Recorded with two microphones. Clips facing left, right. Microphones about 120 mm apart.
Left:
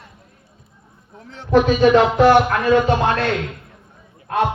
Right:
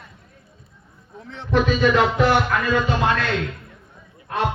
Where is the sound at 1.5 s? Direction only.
35° left (ahead or behind).